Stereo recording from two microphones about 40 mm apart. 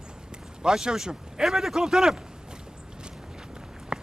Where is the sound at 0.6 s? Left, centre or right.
Centre.